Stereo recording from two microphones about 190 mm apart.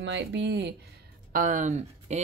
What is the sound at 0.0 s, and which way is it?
Speech, 65° right (ahead or behind).